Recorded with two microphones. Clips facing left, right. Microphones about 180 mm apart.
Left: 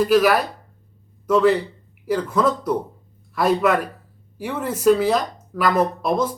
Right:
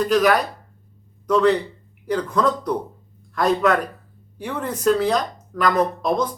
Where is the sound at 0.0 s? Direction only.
5° left (ahead or behind).